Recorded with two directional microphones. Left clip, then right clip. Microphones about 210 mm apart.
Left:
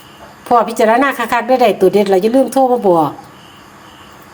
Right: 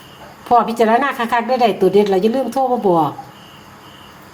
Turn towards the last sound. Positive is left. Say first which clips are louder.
# left 4 dB
turn(degrees=30)  # may be behind; listen again after turning